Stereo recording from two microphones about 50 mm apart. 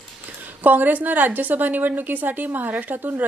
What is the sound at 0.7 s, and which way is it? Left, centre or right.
A woman's voice, right.